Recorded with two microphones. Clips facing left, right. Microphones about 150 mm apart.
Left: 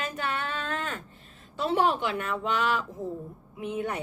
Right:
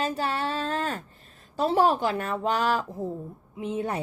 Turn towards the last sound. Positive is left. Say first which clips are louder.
# right 2 dB
turn(degrees=-30)  # may be behind; listen again after turning